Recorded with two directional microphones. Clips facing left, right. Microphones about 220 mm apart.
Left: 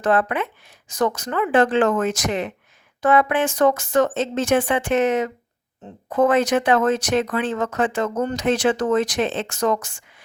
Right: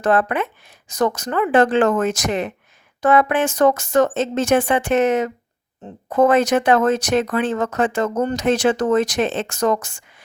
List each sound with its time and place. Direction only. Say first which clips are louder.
0.0 s speech: right 2 dB; 45° right (ahead or behind)